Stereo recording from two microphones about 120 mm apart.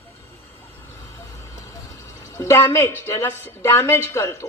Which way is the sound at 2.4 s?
25° left (ahead or behind).